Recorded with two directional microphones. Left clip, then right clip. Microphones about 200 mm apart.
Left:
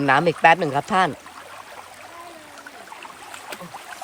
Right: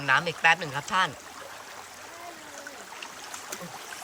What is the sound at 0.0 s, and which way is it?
Speech, 25° left (ahead or behind).